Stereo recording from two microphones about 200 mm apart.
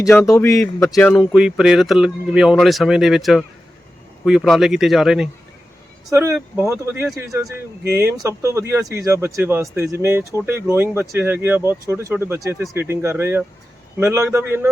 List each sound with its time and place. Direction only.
0.0 s a man's voice: 15° left (ahead or behind)
6.1 s speech: 15° right (ahead or behind)